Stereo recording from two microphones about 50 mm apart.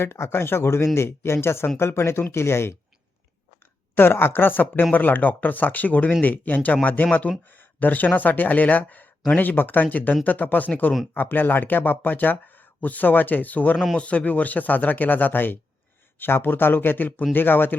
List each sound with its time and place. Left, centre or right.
0.0 s speech: left
3.9 s speech: left